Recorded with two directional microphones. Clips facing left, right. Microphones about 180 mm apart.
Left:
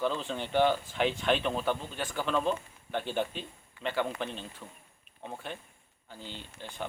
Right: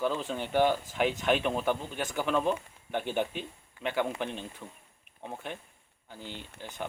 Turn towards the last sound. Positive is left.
turn(degrees=-10)  # may be behind; listen again after turning